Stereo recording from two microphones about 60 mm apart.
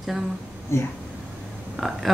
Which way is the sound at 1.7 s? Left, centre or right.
Centre.